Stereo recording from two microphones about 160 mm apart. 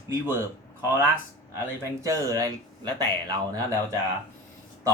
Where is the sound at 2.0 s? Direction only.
20° right (ahead or behind).